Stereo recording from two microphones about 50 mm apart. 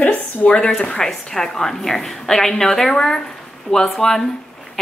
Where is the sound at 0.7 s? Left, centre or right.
Centre.